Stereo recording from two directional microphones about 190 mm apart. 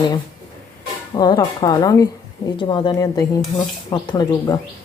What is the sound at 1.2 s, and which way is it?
A woman's voice, 20° left (ahead or behind).